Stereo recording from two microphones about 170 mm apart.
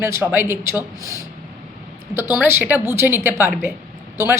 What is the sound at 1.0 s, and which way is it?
Speech, 20° left (ahead or behind).